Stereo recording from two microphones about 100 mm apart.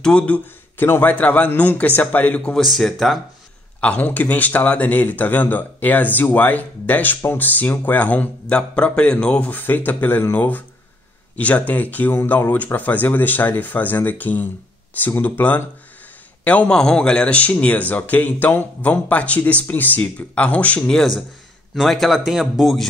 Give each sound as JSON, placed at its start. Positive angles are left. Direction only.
{"t": 0.0, "sound": "speech", "side_deg": 10}
{"t": 0.7, "sound": "speech", "side_deg": 20}
{"t": 2.6, "sound": "a man's voice", "side_deg": 0}
{"t": 3.8, "sound": "speech", "side_deg": 15}
{"t": 21.7, "sound": "a man's voice", "side_deg": 0}